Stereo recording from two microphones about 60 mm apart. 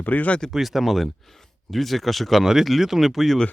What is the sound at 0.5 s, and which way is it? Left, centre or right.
Speech, centre.